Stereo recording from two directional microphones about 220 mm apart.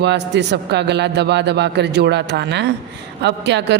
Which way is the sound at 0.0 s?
50° right (ahead or behind).